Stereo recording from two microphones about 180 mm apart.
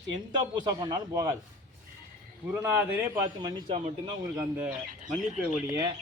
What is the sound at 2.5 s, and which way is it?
A man's voice, 15° right (ahead or behind).